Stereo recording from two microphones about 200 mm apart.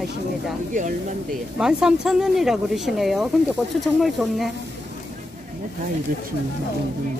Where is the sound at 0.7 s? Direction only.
40° right (ahead or behind).